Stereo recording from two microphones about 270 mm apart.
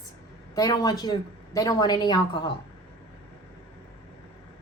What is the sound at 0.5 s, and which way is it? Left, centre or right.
A woman's voice, centre.